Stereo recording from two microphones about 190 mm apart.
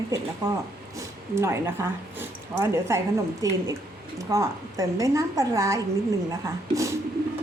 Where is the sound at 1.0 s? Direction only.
15° right (ahead or behind).